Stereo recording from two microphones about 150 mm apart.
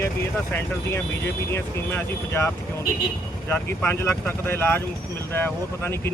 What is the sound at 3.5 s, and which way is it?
Speech, 15° left (ahead or behind).